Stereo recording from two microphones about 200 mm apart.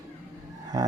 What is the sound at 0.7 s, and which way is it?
Speech, 20° right (ahead or behind).